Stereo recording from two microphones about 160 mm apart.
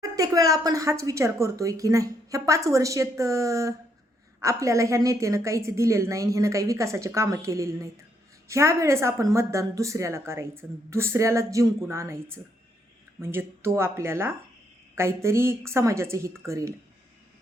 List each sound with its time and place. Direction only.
0.0 s a woman's voice: 20° right (ahead or behind)